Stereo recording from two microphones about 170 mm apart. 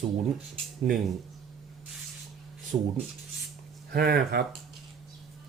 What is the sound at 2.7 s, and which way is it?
Speech, 30° right (ahead or behind).